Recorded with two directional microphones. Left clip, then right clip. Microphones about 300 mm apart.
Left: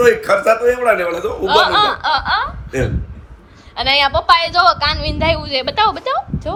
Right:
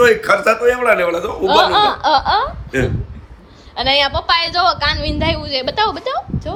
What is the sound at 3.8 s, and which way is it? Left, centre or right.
A woman's voice, centre.